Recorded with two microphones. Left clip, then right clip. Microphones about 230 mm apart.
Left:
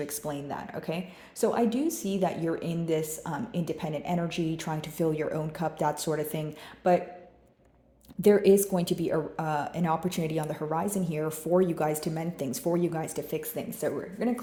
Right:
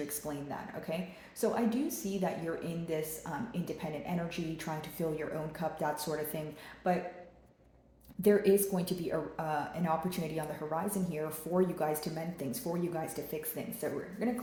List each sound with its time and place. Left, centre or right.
0.1 s a woman's voice: left
8.2 s a woman's voice: left